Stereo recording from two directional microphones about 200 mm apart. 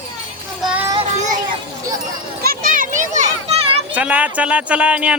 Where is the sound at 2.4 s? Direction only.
45° right (ahead or behind).